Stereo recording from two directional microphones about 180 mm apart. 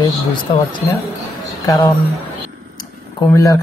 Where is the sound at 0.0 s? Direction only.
25° left (ahead or behind).